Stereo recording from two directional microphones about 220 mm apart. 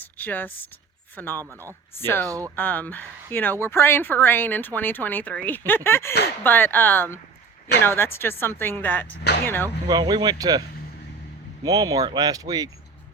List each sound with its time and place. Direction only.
0.0 s a sound: 10° left (ahead or behind)
1.1 s speech: 10° left (ahead or behind)
1.5 s speech: 10° right (ahead or behind)
2.6 s speech: 10° left (ahead or behind)
9.6 s speech: 15° right (ahead or behind)
11.6 s speech: 15° right (ahead or behind)